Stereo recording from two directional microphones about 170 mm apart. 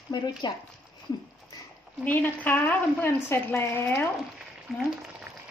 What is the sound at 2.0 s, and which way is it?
A woman's voice, 10° left (ahead or behind).